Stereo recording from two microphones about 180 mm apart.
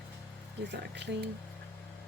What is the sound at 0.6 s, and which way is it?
Speech, 70° right (ahead or behind).